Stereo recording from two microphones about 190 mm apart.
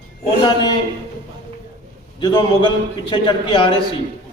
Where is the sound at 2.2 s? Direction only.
25° left (ahead or behind).